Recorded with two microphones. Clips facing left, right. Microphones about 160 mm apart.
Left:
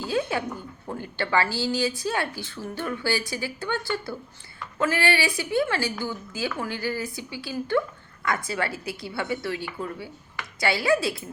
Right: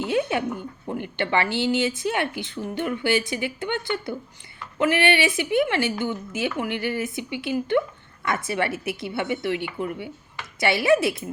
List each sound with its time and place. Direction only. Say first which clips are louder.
0.0 s a woman's voice: right 3 dB; 20° right (ahead or behind)